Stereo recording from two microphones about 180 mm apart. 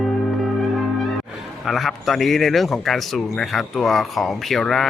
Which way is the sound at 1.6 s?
Centre (ahead or behind).